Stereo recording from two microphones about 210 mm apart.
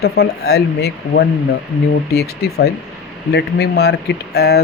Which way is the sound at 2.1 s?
50° left (ahead or behind).